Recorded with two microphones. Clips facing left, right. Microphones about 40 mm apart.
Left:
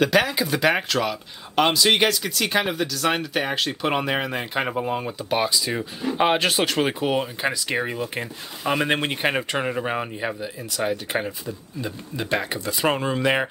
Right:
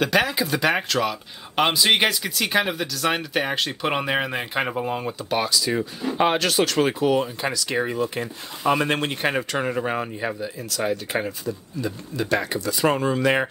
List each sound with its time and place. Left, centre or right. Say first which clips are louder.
0.0 s speech: left 1 dB; centre
1.5 s speech: left 1 dB; centre
6.3 s speech: even; centre
11.4 s speech: right 3 dB; centre